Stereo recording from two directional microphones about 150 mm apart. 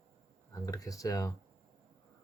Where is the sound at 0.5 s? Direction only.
25° left (ahead or behind).